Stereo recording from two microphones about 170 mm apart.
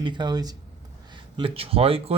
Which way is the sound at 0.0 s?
25° right (ahead or behind).